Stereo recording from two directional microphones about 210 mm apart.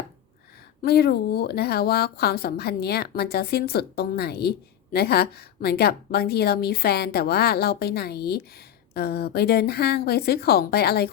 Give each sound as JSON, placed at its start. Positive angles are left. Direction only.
{"t": 0.8, "sound": "speech", "side_deg": 50}